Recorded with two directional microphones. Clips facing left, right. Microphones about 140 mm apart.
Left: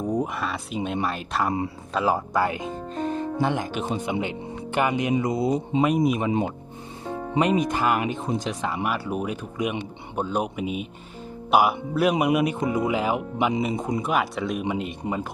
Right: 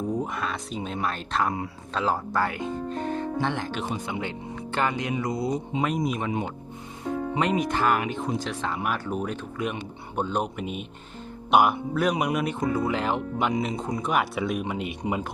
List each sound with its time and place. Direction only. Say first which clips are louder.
0.2 s speech: left 2 dB; 5° left (ahead or behind)
7.3 s speech: left 4 dB; 20° left (ahead or behind); by 15.1 s centre (ahead or behind)